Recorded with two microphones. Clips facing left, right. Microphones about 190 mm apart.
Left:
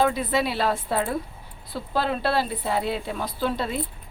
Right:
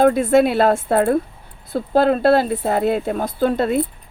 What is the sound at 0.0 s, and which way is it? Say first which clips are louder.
A woman's voice: right 9 dB; 50° right (ahead or behind).